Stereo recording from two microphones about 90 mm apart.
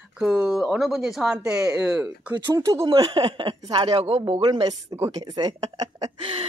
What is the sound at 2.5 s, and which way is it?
Speech, 35° right (ahead or behind).